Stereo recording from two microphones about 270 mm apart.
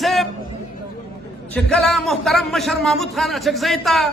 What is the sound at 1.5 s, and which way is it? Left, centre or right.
A man's voice, centre.